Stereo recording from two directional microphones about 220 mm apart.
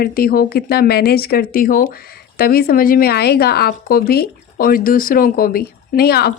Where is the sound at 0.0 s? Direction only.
40° left (ahead or behind).